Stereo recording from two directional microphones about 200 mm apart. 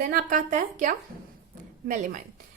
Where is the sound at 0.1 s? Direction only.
40° right (ahead or behind).